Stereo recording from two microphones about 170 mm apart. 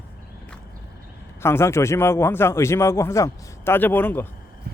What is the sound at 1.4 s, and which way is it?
Speech, 15° left (ahead or behind).